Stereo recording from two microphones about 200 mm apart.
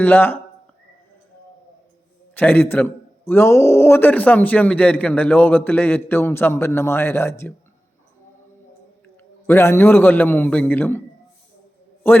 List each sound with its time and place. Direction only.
0.0 s a man's voice: 10° left (ahead or behind)
2.3 s a man's voice: 10° left (ahead or behind)
9.5 s a man's voice: 10° left (ahead or behind)